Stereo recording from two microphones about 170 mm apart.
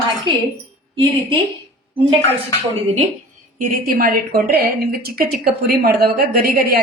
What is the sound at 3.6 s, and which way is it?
A woman's voice, 55° right (ahead or behind).